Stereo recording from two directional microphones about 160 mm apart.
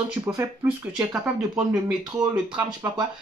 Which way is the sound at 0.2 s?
20° right (ahead or behind).